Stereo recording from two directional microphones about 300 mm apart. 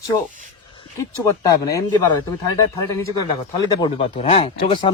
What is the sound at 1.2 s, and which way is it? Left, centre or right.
Speech, centre.